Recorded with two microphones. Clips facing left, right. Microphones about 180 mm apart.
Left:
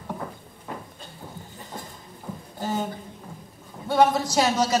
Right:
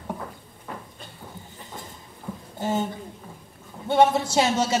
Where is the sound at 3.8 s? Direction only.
25° right (ahead or behind).